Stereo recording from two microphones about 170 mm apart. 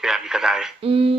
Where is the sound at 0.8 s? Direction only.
35° right (ahead or behind).